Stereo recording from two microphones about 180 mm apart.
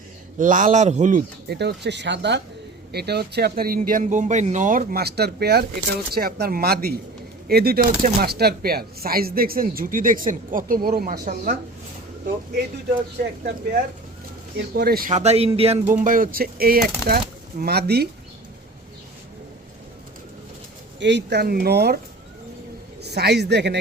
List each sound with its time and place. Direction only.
0.3 s speech: 45° right (ahead or behind)
1.5 s speech: 70° right (ahead or behind)
2.9 s speech: 65° right (ahead or behind)
13.1 s speech: 65° right (ahead or behind)
15.1 s speech: 35° right (ahead or behind); by 18.1 s 60° right (ahead or behind)
21.0 s speech: 75° right (ahead or behind)
23.0 s speech: 65° right (ahead or behind)